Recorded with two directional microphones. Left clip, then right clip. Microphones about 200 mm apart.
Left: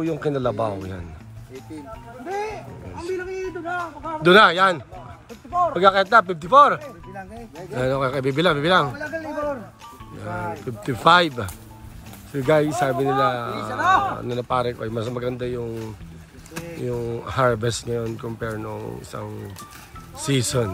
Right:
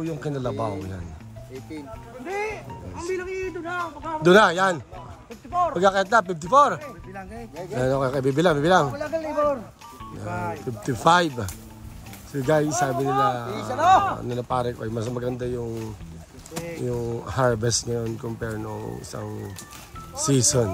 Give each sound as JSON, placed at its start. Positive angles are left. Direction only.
{"t": 0.0, "sound": "a man's voice", "side_deg": -5}
{"t": 2.2, "sound": "a man's voice", "side_deg": 0}
{"t": 4.2, "sound": "speech", "side_deg": -15}
{"t": 9.0, "sound": "a man's voice", "side_deg": 0}
{"t": 10.8, "sound": "speech", "side_deg": -10}
{"t": 13.7, "sound": "speech", "side_deg": -35}
{"t": 14.0, "sound": "a man's voice", "side_deg": -5}
{"t": 14.3, "sound": "speech", "side_deg": -15}
{"t": 16.6, "sound": "a man's voice", "side_deg": -5}
{"t": 16.9, "sound": "speech", "side_deg": -15}
{"t": 20.2, "sound": "speech", "side_deg": -15}